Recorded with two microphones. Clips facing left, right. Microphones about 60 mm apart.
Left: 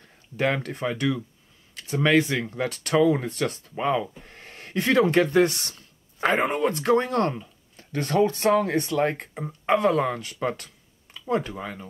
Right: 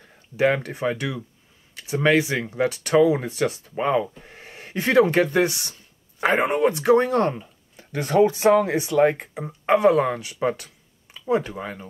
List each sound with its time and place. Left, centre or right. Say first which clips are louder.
0.0 s speech: right 5 dB; centre
11.6 s speech: right 2 dB; centre